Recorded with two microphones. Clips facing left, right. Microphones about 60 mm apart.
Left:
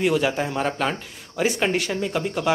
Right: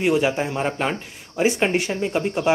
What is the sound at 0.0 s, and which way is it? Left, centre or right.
Speech, centre.